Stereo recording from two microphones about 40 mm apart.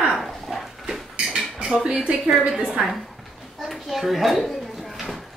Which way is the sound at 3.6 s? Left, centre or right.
Centre.